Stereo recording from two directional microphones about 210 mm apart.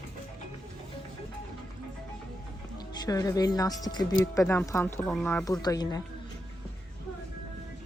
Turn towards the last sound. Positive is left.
turn(degrees=15)  # may be behind; listen again after turning